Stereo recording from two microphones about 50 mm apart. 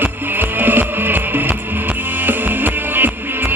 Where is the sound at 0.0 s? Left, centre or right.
Right.